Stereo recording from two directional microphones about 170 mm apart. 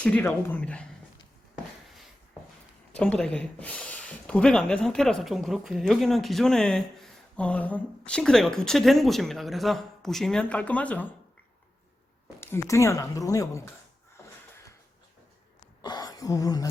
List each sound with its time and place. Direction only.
0.0 s speech: 10° left (ahead or behind)
2.9 s speech: 5° left (ahead or behind)
12.4 s speech: 15° left (ahead or behind)
15.8 s a sound: 25° left (ahead or behind)